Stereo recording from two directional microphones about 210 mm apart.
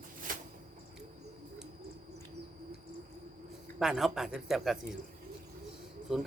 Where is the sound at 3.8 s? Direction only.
Centre (ahead or behind).